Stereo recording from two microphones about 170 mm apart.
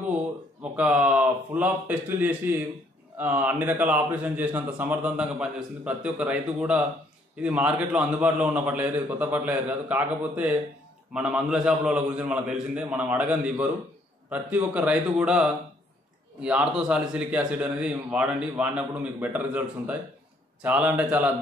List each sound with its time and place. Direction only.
0.6 s a man's voice: 5° right (ahead or behind)